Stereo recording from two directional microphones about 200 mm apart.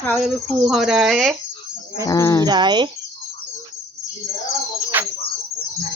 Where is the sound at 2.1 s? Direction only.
15° left (ahead or behind).